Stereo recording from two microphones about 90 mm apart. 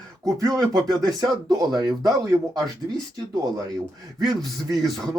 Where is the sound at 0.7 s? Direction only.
45° right (ahead or behind).